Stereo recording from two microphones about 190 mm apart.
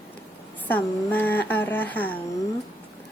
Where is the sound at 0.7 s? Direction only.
10° left (ahead or behind).